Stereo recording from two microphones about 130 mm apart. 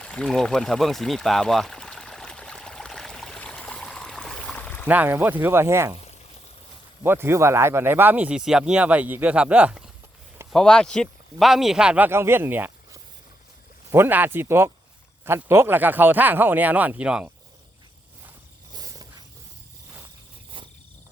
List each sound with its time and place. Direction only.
0.0 s pour: 5° left (ahead or behind)
4.5 s a sound: 10° left (ahead or behind)
4.9 s speech: 15° right (ahead or behind)
7.0 s speech: 20° right (ahead or behind)
10.5 s a man's voice: 5° left (ahead or behind)
18.7 s a sound: 30° right (ahead or behind)